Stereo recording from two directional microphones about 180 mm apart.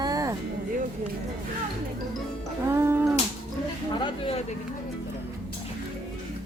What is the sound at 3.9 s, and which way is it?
Speech, 25° left (ahead or behind).